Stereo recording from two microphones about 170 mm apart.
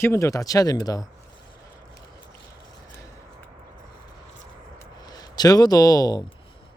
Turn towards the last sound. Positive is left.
turn(degrees=25)  # may be behind; listen again after turning